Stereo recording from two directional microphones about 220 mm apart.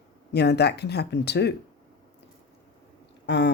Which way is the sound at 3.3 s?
50° left (ahead or behind).